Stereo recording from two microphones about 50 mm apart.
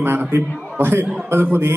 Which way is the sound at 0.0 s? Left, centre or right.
Right.